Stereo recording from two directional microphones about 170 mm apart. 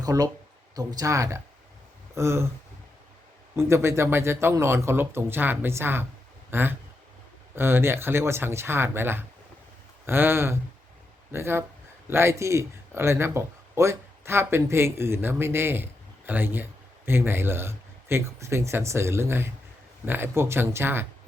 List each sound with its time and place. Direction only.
0.0 s speech: 20° right (ahead or behind)
3.5 s speech: 15° right (ahead or behind)